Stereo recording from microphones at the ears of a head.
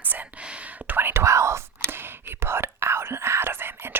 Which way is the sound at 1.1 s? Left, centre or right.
Right.